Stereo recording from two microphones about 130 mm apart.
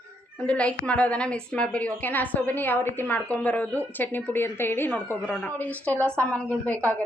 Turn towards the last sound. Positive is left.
turn(degrees=10)  # may be behind; listen again after turning